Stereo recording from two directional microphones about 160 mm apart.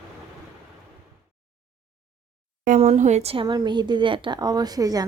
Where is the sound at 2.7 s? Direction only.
45° right (ahead or behind).